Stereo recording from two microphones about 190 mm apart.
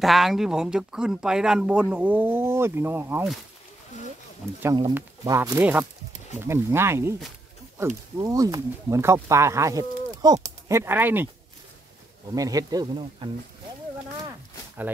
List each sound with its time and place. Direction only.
0.0 s speech: centre (ahead or behind)
4.4 s speech: 5° right (ahead or behind)
12.4 s speech: 20° right (ahead or behind)